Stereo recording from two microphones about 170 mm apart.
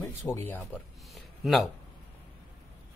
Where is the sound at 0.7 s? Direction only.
Centre (ahead or behind).